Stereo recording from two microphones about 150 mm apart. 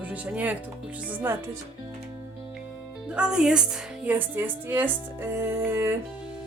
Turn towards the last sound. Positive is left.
turn(degrees=-15)  # may be behind; listen again after turning